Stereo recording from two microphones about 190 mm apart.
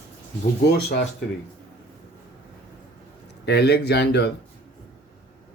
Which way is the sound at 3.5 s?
60° left (ahead or behind).